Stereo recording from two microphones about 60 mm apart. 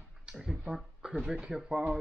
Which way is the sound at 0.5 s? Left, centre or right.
Centre.